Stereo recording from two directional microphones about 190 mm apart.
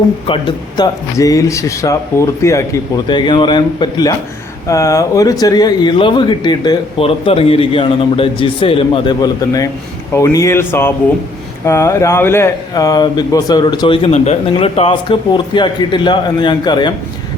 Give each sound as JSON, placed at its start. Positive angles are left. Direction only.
{"t": 0.3, "sound": "speech", "side_deg": 25}